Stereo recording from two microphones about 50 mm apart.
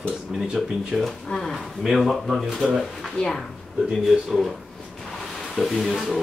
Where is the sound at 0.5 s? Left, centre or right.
Centre.